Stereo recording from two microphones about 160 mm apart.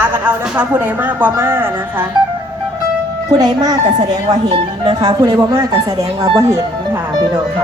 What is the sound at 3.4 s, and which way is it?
Speech, 25° right (ahead or behind).